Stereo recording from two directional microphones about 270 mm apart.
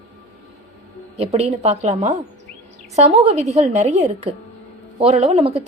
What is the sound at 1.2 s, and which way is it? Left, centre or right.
Speech, right.